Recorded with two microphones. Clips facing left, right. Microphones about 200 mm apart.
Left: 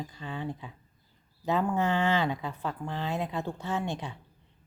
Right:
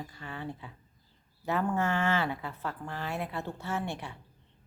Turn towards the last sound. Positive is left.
turn(degrees=15)  # may be behind; listen again after turning